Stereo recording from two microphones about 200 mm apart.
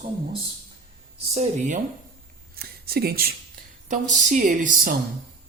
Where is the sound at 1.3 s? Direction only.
35° right (ahead or behind).